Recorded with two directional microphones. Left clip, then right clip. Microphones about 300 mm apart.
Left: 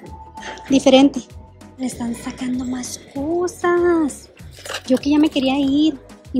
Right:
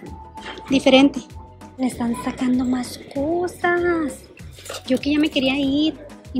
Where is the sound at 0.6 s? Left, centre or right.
Centre.